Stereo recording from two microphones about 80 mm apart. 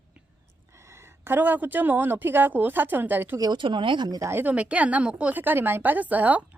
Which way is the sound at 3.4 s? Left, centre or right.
Right.